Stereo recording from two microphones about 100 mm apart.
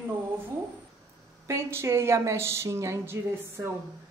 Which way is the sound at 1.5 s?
25° right (ahead or behind).